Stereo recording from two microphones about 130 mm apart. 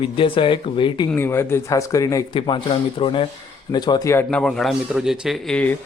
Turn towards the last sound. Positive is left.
turn(degrees=10)  # may be behind; listen again after turning